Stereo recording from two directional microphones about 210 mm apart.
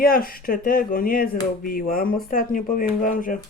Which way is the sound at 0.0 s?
45° left (ahead or behind).